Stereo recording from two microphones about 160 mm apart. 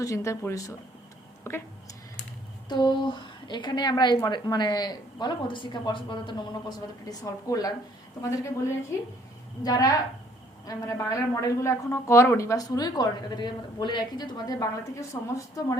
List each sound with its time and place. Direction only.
0.0 s speech: 20° left (ahead or behind)
2.6 s speech: 30° left (ahead or behind)
9.6 s speech: 20° left (ahead or behind)